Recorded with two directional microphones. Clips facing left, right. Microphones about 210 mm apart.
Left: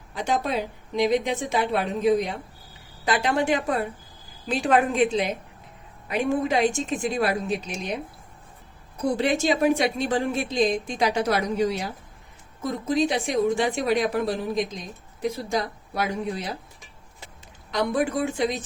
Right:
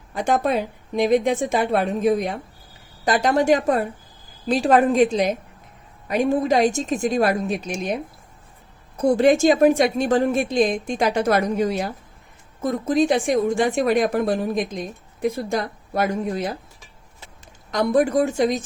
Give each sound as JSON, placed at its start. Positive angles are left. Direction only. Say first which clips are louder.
{"t": 0.1, "sound": "a woman's voice", "louder": "right 5 dB", "side_deg": -50}
{"t": 9.1, "sound": "a woman's voice", "louder": "right 8 dB", "side_deg": -45}
{"t": 17.7, "sound": "a woman's voice", "louder": "right 5 dB", "side_deg": -45}